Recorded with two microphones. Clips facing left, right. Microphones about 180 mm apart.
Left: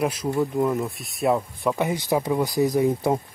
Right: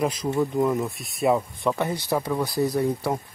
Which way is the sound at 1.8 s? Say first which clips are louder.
Left 2 dB; 15° left (ahead or behind).